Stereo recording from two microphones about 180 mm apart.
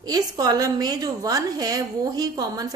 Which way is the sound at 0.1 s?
20° right (ahead or behind).